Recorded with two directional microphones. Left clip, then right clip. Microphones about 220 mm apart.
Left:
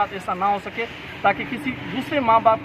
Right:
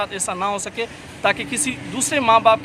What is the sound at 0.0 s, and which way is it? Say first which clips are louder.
Speech: left 1 dB; 30° right (ahead or behind).